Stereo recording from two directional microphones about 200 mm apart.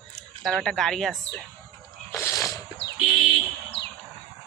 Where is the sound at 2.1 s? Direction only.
15° left (ahead or behind).